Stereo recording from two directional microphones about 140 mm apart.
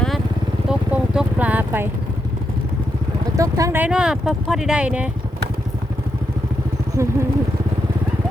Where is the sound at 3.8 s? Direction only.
5° right (ahead or behind).